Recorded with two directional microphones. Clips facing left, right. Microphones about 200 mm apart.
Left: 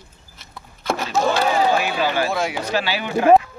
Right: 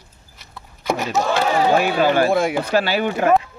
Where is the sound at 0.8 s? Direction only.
15° right (ahead or behind).